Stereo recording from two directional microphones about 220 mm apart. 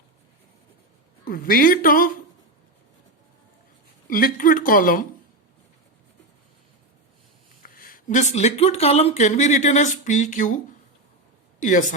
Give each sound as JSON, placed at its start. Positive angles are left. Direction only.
{"t": 1.2, "sound": "speech", "side_deg": 40}
{"t": 4.1, "sound": "speech", "side_deg": 40}
{"t": 7.6, "sound": "speech", "side_deg": 40}
{"t": 11.6, "sound": "speech", "side_deg": 35}